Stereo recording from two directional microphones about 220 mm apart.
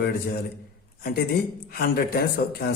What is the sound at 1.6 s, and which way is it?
Speech, 45° left (ahead or behind).